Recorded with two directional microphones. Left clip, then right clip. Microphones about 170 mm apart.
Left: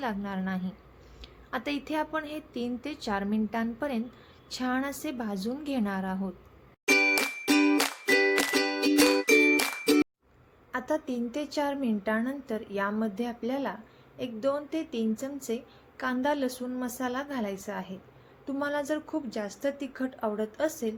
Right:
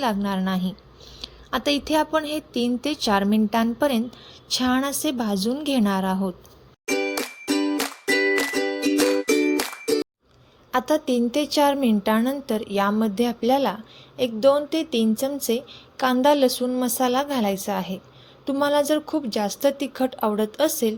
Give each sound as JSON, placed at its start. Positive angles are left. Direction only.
{"t": 0.0, "sound": "speech", "side_deg": -40}
{"t": 6.8, "sound": "music", "side_deg": -5}
{"t": 10.7, "sound": "a woman's voice", "side_deg": -50}